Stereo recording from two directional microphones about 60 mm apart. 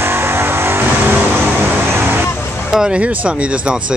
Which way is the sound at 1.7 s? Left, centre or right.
Right.